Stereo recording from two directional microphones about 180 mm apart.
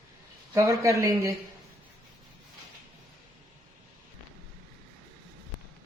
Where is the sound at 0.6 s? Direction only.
15° right (ahead or behind).